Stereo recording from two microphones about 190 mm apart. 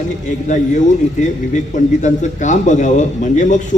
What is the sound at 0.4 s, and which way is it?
Speech, 40° left (ahead or behind).